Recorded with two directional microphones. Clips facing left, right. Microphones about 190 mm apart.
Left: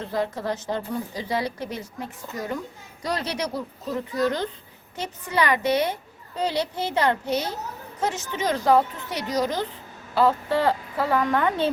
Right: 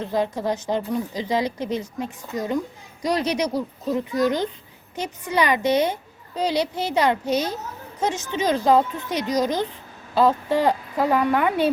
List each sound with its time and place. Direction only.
0.0 s a woman's voice: 15° right (ahead or behind)